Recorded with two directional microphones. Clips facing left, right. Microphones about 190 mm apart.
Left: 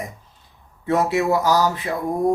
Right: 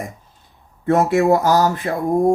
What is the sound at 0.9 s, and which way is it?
Speech, 50° right (ahead or behind).